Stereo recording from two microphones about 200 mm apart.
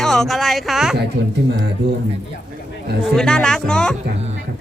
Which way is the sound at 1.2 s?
60° right (ahead or behind).